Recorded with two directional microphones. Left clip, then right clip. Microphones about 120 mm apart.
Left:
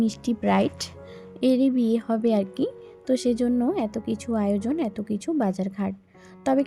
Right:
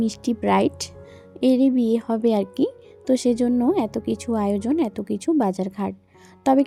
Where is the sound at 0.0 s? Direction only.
35° right (ahead or behind).